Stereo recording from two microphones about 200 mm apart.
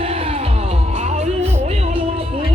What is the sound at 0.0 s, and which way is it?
Music, 30° right (ahead or behind).